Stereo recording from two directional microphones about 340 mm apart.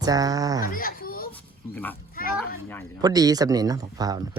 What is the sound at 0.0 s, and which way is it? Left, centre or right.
Speech, centre.